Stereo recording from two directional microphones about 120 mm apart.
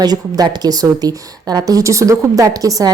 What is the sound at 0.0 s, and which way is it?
A woman's voice, 35° right (ahead or behind).